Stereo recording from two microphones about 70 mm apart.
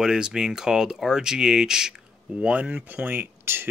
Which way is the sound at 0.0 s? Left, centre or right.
Centre.